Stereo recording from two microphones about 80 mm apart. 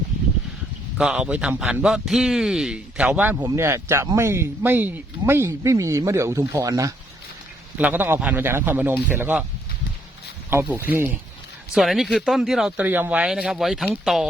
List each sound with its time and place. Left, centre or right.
0.9 s a man's voice: centre
3.5 s speech: right
7.8 s a man's voice: right
10.5 s a man's voice: right
11.7 s speech: centre
12.7 s a man's voice: right
13.2 s speech: centre